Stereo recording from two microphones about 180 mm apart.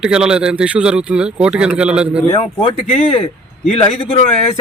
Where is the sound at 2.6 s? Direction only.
30° left (ahead or behind).